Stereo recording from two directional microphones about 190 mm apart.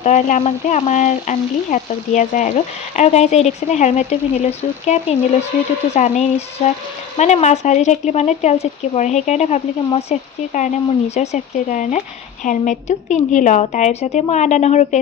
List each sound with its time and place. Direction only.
0.0 s speech: 40° left (ahead or behind)